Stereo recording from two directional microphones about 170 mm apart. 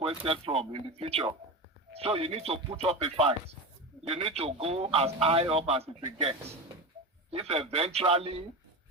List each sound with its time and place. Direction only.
0.3 s a man's voice: 35° right (ahead or behind)